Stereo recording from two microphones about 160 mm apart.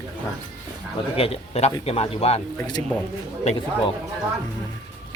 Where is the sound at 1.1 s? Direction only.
40° left (ahead or behind).